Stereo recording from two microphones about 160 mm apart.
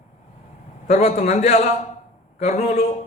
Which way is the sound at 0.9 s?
45° left (ahead or behind).